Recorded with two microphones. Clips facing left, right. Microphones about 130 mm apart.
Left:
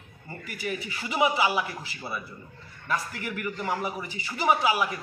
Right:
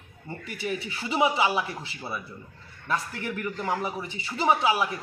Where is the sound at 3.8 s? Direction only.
25° right (ahead or behind).